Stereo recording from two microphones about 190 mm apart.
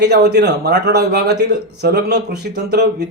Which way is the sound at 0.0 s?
60° right (ahead or behind).